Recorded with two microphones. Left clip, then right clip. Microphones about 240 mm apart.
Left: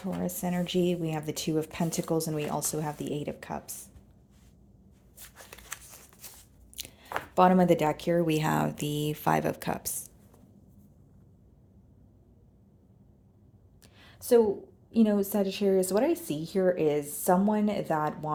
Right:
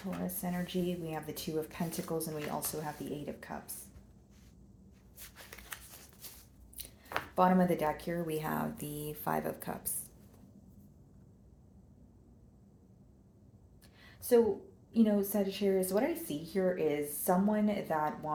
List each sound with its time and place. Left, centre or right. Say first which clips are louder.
0.4 s a woman's voice: left 9 dB; left
5.4 s a sound: left 4 dB; left
6.8 s chopping: left 10 dB; left
7.3 s a woman's voice: left 7 dB; left
14.2 s a sound: left 5 dB; left
14.9 s a woman's voice: left 4 dB; left